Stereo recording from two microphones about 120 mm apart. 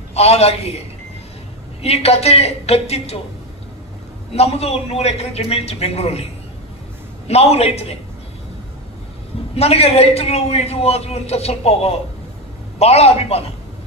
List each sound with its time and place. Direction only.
0.1 s a man's voice: 60° left (ahead or behind)
1.8 s a man's voice: 60° left (ahead or behind)
4.3 s a man's voice: 55° left (ahead or behind)
7.2 s a man's voice: 60° left (ahead or behind)
9.6 s a man's voice: 60° left (ahead or behind)